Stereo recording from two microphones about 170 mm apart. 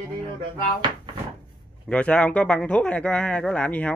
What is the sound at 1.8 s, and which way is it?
Speech, 5° left (ahead or behind).